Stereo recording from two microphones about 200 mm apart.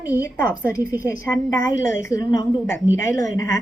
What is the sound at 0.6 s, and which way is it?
A woman's voice, 15° left (ahead or behind).